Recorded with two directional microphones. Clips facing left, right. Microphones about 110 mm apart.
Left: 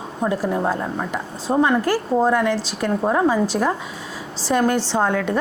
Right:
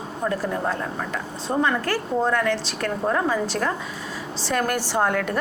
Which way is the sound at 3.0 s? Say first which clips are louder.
Left 4 dB; 20° left (ahead or behind).